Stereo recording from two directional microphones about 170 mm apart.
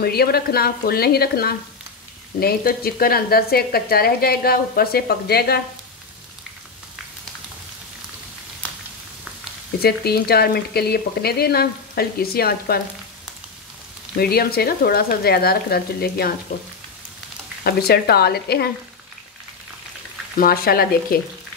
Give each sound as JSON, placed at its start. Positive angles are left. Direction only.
{"t": 0.0, "sound": "speech", "side_deg": 65}
{"t": 9.8, "sound": "speech", "side_deg": 65}
{"t": 14.1, "sound": "speech", "side_deg": 65}
{"t": 17.6, "sound": "speech", "side_deg": 65}
{"t": 20.3, "sound": "speech", "side_deg": 60}